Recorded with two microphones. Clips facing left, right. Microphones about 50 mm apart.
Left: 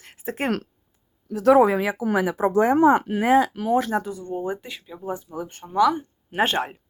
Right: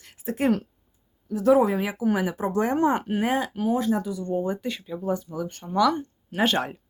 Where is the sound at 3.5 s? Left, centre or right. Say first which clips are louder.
Left 3 dB; left.